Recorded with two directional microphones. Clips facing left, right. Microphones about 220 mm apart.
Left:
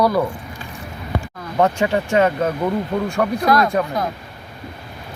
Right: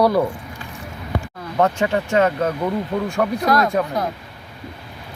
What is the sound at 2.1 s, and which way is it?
Speech, 10° left (ahead or behind).